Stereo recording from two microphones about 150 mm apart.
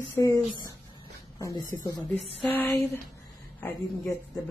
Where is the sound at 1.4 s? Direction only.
25° left (ahead or behind).